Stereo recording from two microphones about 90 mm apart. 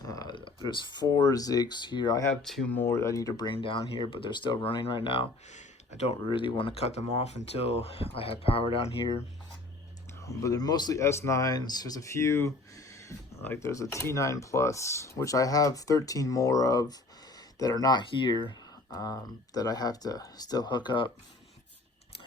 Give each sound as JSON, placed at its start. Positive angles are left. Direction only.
{"t": 0.0, "sound": "a sound", "side_deg": 45}
{"t": 0.3, "sound": "speech", "side_deg": 65}
{"t": 2.4, "sound": "speech", "side_deg": 5}
{"t": 2.6, "sound": "speech", "side_deg": 20}
{"t": 2.9, "sound": "speech", "side_deg": 35}
{"t": 3.5, "sound": "speech", "side_deg": 75}
{"t": 6.3, "sound": "speech", "side_deg": 75}
{"t": 7.9, "sound": "speech", "side_deg": 90}
{"t": 10.2, "sound": "speech", "side_deg": 35}
{"t": 11.0, "sound": "speech", "side_deg": 30}
{"t": 18.2, "sound": "speech", "side_deg": 65}
{"t": 18.9, "sound": "speech", "side_deg": 45}